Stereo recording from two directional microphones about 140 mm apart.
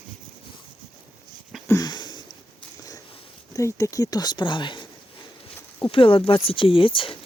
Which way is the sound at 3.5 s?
20° left (ahead or behind).